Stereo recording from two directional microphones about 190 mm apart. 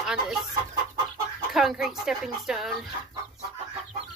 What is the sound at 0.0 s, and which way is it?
Speech, centre (ahead or behind).